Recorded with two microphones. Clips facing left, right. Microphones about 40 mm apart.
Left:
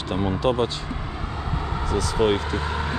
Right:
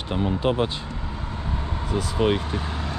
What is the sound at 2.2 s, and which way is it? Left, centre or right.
Speech, centre.